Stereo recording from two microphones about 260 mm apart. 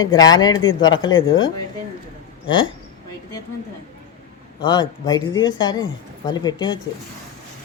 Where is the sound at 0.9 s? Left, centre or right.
Left.